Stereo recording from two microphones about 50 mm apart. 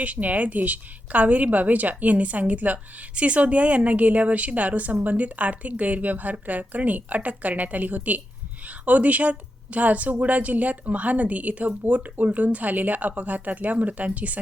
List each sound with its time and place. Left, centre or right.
0.0 s a woman's voice: right